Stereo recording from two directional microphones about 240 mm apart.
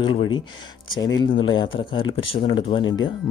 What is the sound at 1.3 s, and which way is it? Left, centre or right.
Speech, left.